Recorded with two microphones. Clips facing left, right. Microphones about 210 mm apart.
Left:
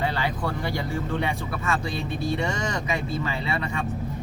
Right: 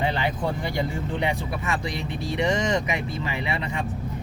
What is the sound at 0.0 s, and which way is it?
Speech, 20° right (ahead or behind).